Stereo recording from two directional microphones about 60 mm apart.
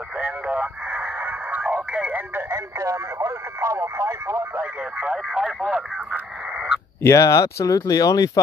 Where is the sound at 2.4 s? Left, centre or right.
Right.